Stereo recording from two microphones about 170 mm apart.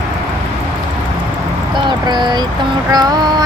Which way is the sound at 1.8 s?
25° right (ahead or behind).